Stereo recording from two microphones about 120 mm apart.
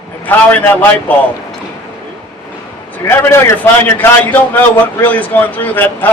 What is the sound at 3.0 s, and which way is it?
A man's voice, 20° left (ahead or behind).